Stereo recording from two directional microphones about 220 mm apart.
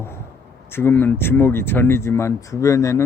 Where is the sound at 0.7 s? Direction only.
10° left (ahead or behind).